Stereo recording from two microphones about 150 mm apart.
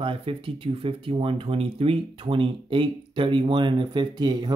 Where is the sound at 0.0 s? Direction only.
40° right (ahead or behind).